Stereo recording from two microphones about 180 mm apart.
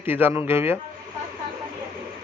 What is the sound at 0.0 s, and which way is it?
Speech, 10° right (ahead or behind).